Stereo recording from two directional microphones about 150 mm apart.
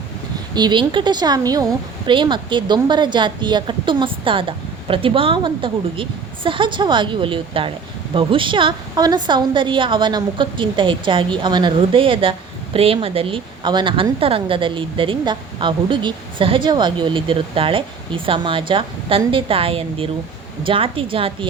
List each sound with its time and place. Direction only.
0.5 s a woman's voice: 30° right (ahead or behind)